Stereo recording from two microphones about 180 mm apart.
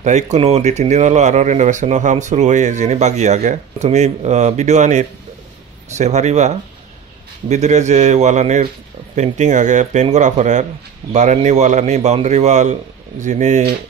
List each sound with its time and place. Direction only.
0.0 s speech: 40° right (ahead or behind)